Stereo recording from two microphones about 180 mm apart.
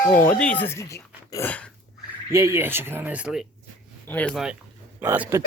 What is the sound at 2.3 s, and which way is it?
Speech, 15° right (ahead or behind).